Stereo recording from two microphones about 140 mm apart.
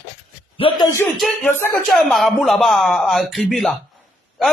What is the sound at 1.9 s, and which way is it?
A man's voice, centre (ahead or behind).